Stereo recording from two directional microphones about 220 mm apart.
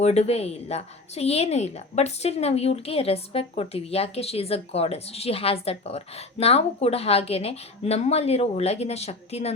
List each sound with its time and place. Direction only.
0.0 s a woman's voice: 30° left (ahead or behind)